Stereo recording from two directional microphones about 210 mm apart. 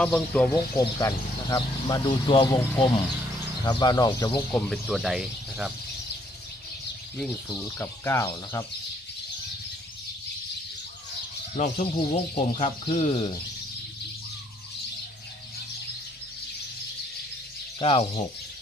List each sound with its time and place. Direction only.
0.0 s speech: 5° left (ahead or behind)
0.5 s speech: 15° left (ahead or behind)
2.6 s speech: 10° left (ahead or behind)
4.5 s speech: centre (ahead or behind)
7.5 s speech: 10° left (ahead or behind)
11.5 s speech: 35° left (ahead or behind)
17.7 s speech: 25° left (ahead or behind)